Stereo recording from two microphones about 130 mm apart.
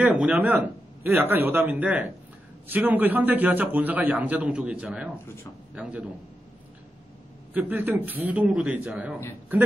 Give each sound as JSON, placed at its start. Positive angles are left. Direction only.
{"t": 0.0, "sound": "a man's voice", "side_deg": -10}
{"t": 5.2, "sound": "speech", "side_deg": 20}
{"t": 5.8, "sound": "a man's voice", "side_deg": -10}
{"t": 7.5, "sound": "a man's voice", "side_deg": -15}